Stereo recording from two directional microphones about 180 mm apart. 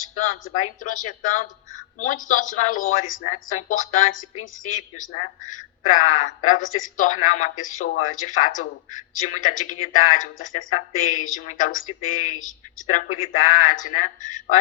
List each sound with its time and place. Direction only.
0.0 s speech: 45° left (ahead or behind)